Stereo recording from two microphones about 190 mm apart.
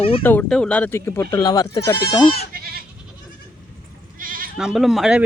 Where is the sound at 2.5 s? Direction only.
55° right (ahead or behind).